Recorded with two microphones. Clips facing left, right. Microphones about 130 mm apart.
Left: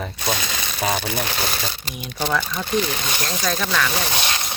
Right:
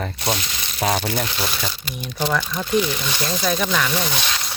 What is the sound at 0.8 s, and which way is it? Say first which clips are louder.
Speech: right 2 dB; centre (ahead or behind).